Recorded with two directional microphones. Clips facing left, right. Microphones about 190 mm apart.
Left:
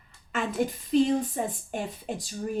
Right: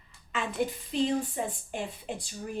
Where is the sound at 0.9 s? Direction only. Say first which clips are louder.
Left 7 dB; 45° left (ahead or behind).